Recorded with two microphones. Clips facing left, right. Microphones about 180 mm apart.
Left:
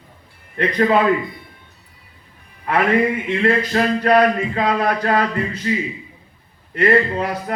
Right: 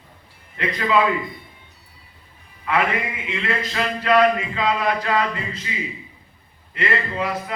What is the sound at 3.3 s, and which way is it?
A man's voice, 45° left (ahead or behind).